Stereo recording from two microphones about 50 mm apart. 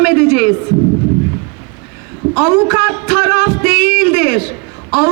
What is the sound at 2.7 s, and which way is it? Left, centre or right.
Music, right.